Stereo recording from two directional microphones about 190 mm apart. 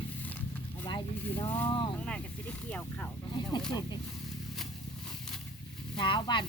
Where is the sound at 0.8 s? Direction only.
25° left (ahead or behind).